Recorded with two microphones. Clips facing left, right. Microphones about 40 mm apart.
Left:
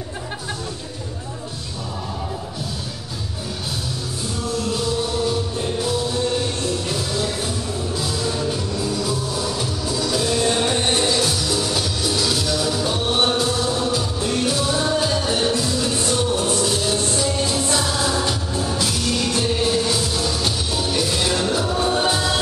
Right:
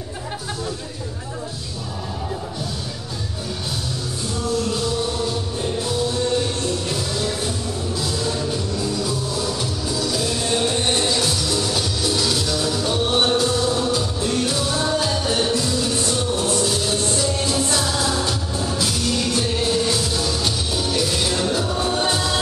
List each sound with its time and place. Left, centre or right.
6.6 s music: centre